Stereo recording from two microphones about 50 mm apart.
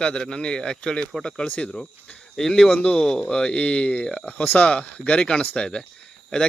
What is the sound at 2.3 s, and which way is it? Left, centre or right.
A man's voice, centre.